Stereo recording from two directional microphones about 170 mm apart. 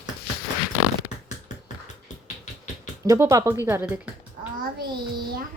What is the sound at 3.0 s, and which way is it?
Speech, 15° right (ahead or behind).